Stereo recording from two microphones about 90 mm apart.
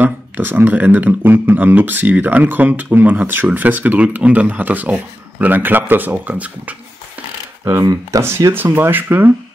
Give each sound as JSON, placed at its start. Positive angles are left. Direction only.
{"t": 0.0, "sound": "speech", "side_deg": -20}
{"t": 7.8, "sound": "speech", "side_deg": -45}
{"t": 8.2, "sound": "speech", "side_deg": -30}